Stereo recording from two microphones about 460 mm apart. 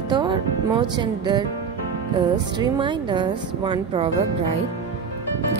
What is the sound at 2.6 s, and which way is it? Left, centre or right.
Speech, centre.